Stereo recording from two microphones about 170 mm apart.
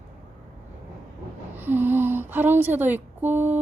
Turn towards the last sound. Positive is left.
turn(degrees=-10)  # may be behind; listen again after turning